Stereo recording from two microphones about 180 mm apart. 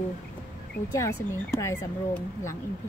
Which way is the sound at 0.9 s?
15° left (ahead or behind).